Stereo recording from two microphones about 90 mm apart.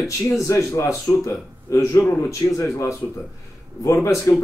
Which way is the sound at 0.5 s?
35° left (ahead or behind).